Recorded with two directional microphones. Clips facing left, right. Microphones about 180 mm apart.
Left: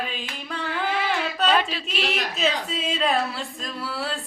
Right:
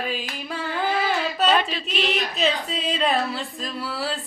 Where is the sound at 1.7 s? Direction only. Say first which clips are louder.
Right 2 dB; 5° left (ahead or behind).